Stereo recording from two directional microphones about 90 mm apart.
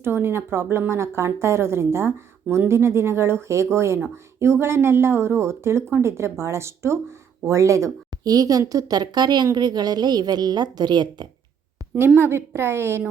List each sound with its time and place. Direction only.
0.0 s a woman's voice: 25° right (ahead or behind); by 11.3 s 55° right (ahead or behind)
11.9 s speech: 25° right (ahead or behind)